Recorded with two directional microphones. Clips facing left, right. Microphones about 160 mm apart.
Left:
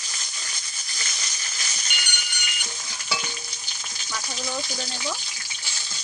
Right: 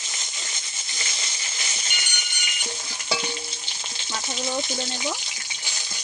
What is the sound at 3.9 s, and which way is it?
Speech, 25° right (ahead or behind).